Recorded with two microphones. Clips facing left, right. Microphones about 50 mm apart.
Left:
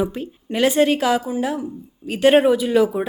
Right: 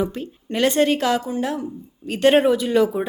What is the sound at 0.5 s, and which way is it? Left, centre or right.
A woman's voice, centre.